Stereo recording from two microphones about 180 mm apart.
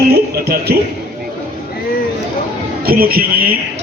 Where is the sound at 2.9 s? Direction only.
55° right (ahead or behind).